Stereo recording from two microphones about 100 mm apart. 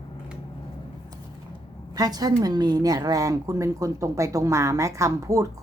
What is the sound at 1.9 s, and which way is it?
Speech, 40° right (ahead or behind).